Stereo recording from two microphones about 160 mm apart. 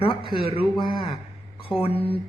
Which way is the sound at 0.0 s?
35° left (ahead or behind).